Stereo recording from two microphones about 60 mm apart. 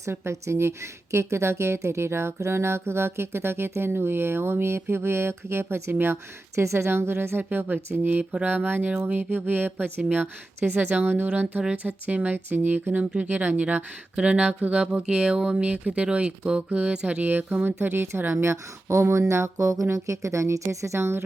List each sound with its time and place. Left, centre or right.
0.0 s a woman's voice: right
8.1 s speech: right
8.4 s speech: right
18.5 s speech: right